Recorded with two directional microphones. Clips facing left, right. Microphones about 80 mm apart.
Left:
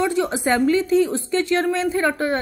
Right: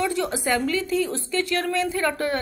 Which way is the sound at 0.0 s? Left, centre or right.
Left.